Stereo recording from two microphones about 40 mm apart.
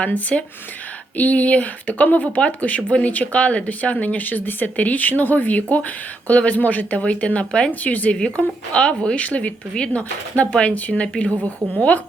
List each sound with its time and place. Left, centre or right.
0.1 s speech: left
7.0 s speech: left
7.7 s speech: left
8.7 s speech: left
9.2 s speech: left
11.0 s speech: left